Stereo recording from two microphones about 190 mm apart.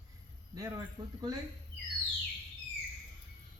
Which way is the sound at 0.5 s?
20° right (ahead or behind).